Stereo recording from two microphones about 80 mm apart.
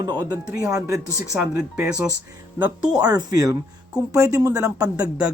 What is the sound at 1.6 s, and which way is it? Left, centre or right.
Speech, centre.